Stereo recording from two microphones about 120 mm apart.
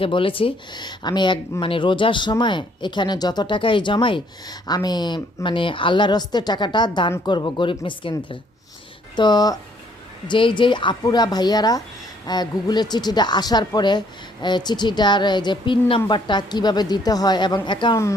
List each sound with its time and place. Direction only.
0.0 s speech: 45° left (ahead or behind)
9.1 s speech: 35° left (ahead or behind)